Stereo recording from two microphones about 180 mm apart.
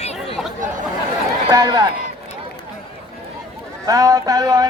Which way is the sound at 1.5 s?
20° right (ahead or behind).